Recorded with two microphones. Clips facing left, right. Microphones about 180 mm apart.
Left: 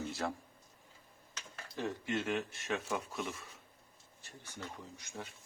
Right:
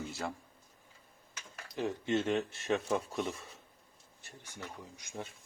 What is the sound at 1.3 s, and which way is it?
Speech, 15° right (ahead or behind).